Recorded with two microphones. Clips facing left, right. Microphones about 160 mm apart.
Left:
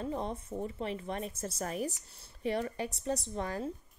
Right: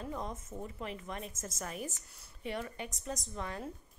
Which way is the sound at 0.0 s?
30° left (ahead or behind).